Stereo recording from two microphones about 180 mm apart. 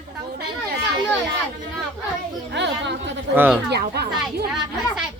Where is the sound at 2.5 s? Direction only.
75° right (ahead or behind).